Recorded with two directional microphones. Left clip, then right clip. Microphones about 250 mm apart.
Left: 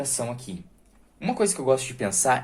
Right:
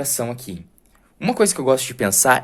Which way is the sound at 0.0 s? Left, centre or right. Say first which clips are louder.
Right 5 dB; right.